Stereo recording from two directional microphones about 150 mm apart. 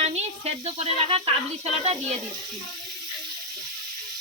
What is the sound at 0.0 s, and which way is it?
Speech, 45° right (ahead or behind).